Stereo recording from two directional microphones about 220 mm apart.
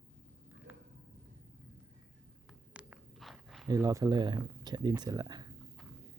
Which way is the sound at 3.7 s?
15° right (ahead or behind).